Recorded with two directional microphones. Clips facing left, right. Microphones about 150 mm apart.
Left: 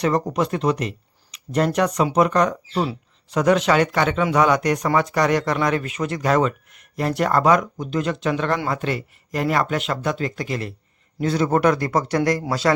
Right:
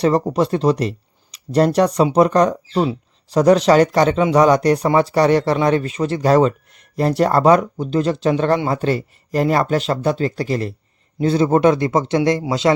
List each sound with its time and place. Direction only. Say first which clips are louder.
0.0 s a man's voice: right 4 dB; 30° right (ahead or behind)